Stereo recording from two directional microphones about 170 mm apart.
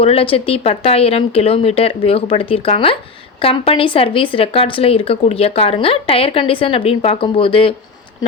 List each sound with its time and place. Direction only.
0.0 s speech: 35° left (ahead or behind)